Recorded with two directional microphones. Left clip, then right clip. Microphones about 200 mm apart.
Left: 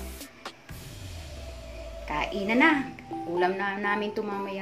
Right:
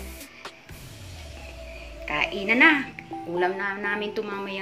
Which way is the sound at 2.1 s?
5° left (ahead or behind).